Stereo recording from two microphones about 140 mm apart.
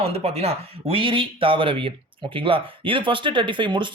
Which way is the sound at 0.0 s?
45° right (ahead or behind).